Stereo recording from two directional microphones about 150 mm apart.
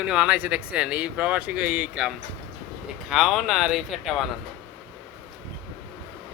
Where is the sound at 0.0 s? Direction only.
5° right (ahead or behind).